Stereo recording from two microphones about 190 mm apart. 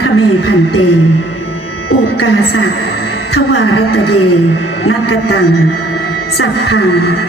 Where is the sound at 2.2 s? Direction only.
90° left.